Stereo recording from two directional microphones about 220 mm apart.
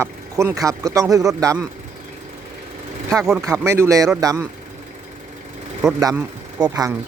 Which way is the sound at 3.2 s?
Centre (ahead or behind).